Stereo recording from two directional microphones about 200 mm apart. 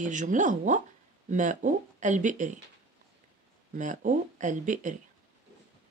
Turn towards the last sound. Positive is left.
turn(degrees=-40)  # may be behind; listen again after turning